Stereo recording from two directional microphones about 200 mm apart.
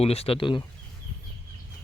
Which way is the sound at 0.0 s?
30° left (ahead or behind).